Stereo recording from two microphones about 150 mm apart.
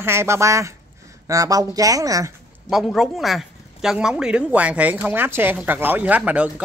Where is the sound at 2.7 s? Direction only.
Centre (ahead or behind).